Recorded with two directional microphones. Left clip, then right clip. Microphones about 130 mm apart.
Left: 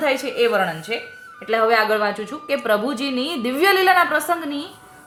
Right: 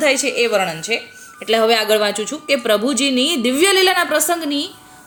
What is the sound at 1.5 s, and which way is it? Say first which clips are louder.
Speech: right 2 dB; 90° right.